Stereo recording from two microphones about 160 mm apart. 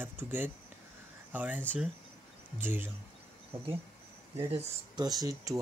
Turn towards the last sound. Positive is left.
turn(degrees=-20)  # may be behind; listen again after turning